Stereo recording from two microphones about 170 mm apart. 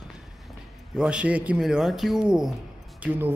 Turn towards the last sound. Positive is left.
turn(degrees=-10)  # may be behind; listen again after turning